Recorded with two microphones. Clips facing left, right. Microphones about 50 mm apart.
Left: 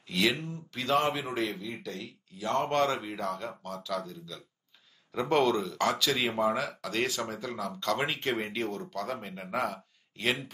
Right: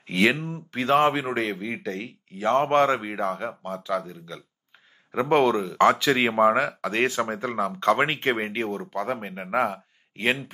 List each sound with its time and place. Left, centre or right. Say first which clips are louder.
0.0 s speech: right 6 dB; right